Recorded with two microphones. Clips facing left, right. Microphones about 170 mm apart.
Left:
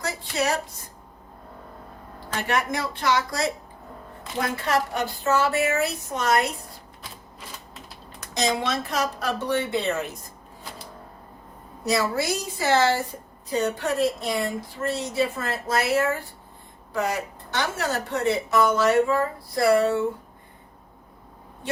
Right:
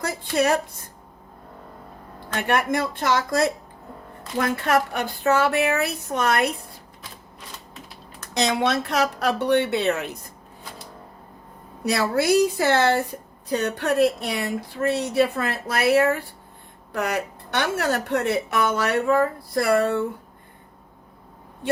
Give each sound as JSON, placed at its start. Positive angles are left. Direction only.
{"t": 0.0, "sound": "speech", "side_deg": -55}
{"t": 2.3, "sound": "a woman's voice", "side_deg": -55}
{"t": 8.3, "sound": "a woman's voice", "side_deg": -65}
{"t": 11.9, "sound": "a woman's voice", "side_deg": -60}